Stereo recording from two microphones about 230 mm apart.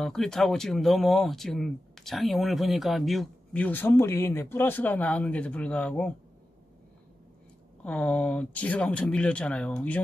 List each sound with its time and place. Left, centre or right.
0.0 s speech: centre
7.8 s speech: centre